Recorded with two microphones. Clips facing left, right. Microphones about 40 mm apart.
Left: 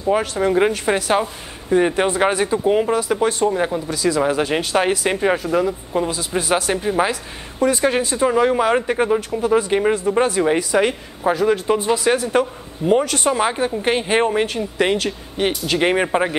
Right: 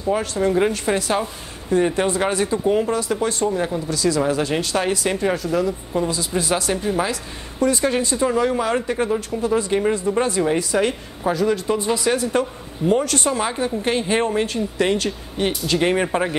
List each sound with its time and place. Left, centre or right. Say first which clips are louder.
0.0 s speech: left 2 dB; centre
11.8 s speech: left 2 dB; centre